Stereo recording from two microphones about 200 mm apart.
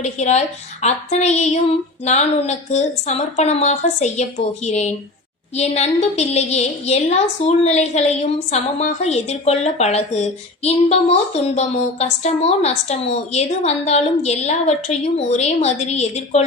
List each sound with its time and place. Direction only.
0.0 s a woman's voice: 35° left (ahead or behind)